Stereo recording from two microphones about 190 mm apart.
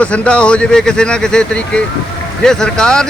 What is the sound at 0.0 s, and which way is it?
Speech, 5° left (ahead or behind).